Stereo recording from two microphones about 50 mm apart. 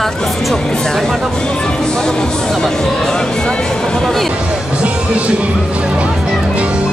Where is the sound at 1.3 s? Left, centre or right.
Centre.